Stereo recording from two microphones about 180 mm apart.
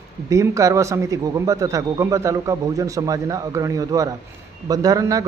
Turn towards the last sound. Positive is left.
turn(degrees=-20)  # may be behind; listen again after turning